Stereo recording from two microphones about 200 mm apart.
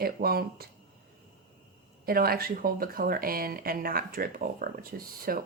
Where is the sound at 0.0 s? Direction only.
50° right (ahead or behind).